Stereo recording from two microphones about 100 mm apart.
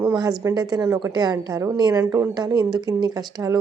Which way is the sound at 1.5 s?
30° right (ahead or behind).